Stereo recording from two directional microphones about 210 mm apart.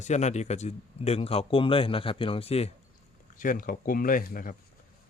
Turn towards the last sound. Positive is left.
turn(degrees=40)  # may be behind; listen again after turning